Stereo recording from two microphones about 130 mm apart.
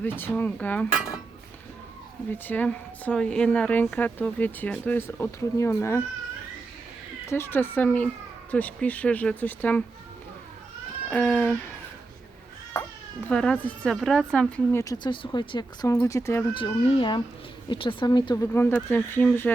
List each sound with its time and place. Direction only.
0.0 s a woman's voice: 15° left (ahead or behind)
2.3 s a woman's voice: 15° left (ahead or behind)
7.3 s a woman's voice: 20° left (ahead or behind)
11.1 s a woman's voice: 15° left (ahead or behind)
13.2 s a woman's voice: 10° left (ahead or behind)
14.9 s speech: 40° left (ahead or behind)
16.6 s speech: 40° left (ahead or behind)
18.5 s a woman's voice: 15° left (ahead or behind)